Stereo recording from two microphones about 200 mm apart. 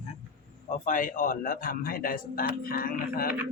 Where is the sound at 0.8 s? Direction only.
40° left (ahead or behind).